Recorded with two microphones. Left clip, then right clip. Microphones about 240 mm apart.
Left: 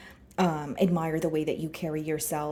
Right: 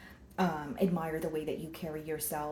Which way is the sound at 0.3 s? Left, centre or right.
Left.